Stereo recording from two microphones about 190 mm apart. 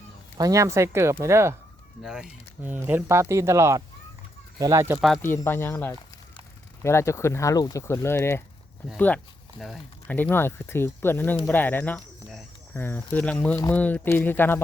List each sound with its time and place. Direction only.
0.3 s speech: 20° right (ahead or behind)
2.0 s speech: 5° right (ahead or behind)
4.9 s speech: centre (ahead or behind)
5.2 s speech: 15° left (ahead or behind)